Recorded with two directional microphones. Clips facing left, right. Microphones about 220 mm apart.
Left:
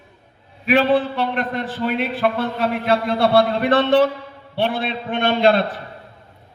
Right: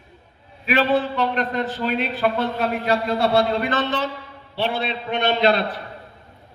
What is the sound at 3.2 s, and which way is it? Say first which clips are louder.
A man's voice: left 4 dB; 55° left (ahead or behind).